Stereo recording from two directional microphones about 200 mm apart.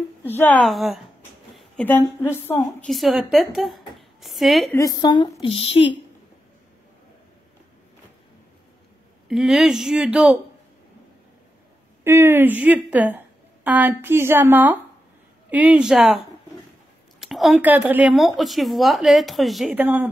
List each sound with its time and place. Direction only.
0.2 s a woman's voice: 10° left (ahead or behind)
4.7 s a woman's voice: 20° left (ahead or behind)
9.3 s speech: centre (ahead or behind)
12.0 s speech: 10° right (ahead or behind)